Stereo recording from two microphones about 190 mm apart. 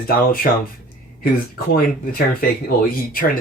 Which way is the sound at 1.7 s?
50° left (ahead or behind).